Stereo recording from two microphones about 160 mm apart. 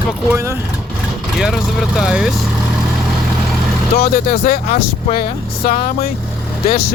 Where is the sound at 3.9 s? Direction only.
65° left (ahead or behind).